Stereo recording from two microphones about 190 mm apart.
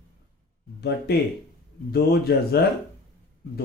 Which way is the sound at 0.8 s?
60° left (ahead or behind).